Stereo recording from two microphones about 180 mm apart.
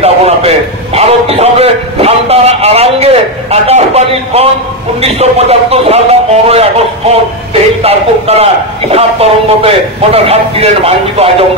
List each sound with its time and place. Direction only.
0.0 s a man's voice: 35° right (ahead or behind)